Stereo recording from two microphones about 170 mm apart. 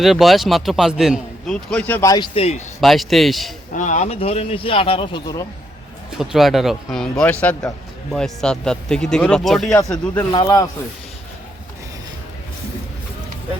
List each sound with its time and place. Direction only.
0.0 s a man's voice: centre (ahead or behind)
2.0 s speech: 25° left (ahead or behind)
2.8 s a man's voice: centre (ahead or behind)
3.7 s speech: 45° left (ahead or behind); by 5.5 s 25° left (ahead or behind)
6.1 s a man's voice: centre (ahead or behind)
10.3 s speech: 30° left (ahead or behind)